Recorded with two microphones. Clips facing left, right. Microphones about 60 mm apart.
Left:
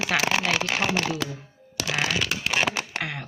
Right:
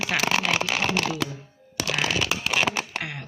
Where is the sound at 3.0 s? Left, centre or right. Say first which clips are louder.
Left 2 dB; left.